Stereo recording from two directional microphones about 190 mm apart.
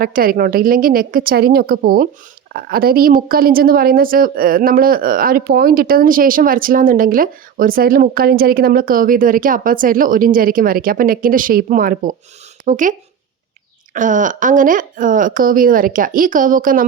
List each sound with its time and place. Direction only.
0.0 s speech: 50° right (ahead or behind)